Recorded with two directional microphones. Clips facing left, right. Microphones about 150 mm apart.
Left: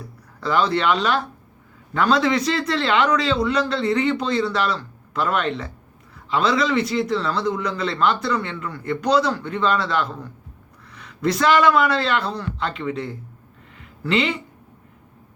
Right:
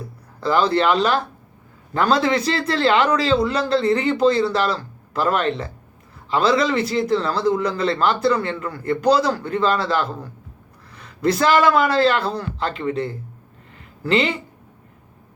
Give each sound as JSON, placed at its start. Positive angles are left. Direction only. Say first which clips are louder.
{"t": 0.3, "sound": "a man's voice", "louder": "right 2 dB", "side_deg": -30}
{"t": 10.9, "sound": "a sound", "louder": "right 2 dB", "side_deg": -30}
{"t": 11.4, "sound": "a man's voice", "louder": "even", "side_deg": 0}
{"t": 11.7, "sound": "a man's voice", "louder": "right 3 dB", "side_deg": -30}